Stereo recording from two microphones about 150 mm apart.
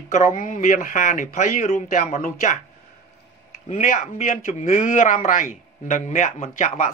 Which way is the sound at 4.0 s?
55° left (ahead or behind).